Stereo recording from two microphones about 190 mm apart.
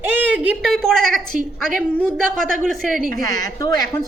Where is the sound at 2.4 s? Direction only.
45° right (ahead or behind).